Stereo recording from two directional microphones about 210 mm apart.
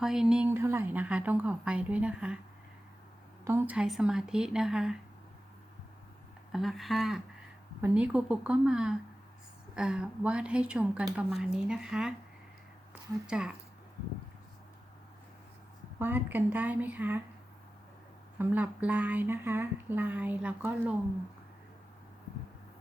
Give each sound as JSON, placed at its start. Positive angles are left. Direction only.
{"t": 0.0, "sound": "speech", "side_deg": 0}
{"t": 3.4, "sound": "a woman's voice", "side_deg": -10}
{"t": 6.5, "sound": "a woman's voice", "side_deg": 0}
{"t": 16.0, "sound": "speech", "side_deg": -10}
{"t": 18.3, "sound": "speech", "side_deg": -5}